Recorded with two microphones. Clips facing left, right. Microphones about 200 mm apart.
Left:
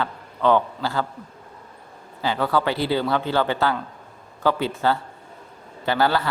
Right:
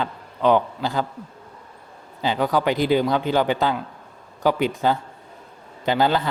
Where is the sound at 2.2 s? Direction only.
15° right (ahead or behind).